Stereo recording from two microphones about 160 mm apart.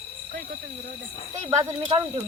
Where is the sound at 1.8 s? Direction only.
40° right (ahead or behind).